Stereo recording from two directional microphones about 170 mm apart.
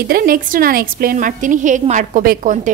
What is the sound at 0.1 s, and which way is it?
A woman's voice, 60° right (ahead or behind).